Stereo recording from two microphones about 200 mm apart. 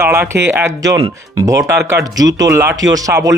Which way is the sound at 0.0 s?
10° right (ahead or behind).